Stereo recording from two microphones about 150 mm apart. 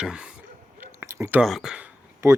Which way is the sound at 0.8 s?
20° right (ahead or behind).